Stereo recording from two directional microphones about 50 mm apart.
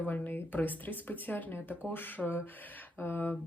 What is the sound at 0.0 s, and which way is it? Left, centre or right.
Speech, left.